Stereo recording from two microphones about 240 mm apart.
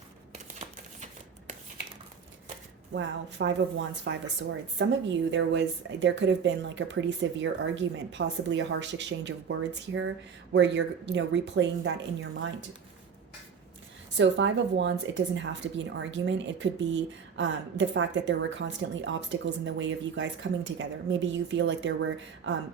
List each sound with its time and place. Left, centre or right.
0.6 s a sound: right
2.9 s speech: right
14.2 s speech: right